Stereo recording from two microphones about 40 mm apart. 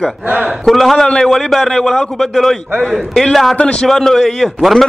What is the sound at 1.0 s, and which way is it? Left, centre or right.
Speech, centre.